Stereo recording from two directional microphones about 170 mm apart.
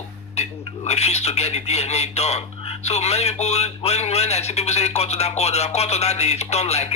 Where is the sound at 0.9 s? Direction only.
40° left (ahead or behind).